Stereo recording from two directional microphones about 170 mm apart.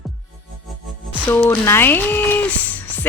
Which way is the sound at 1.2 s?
10° left (ahead or behind).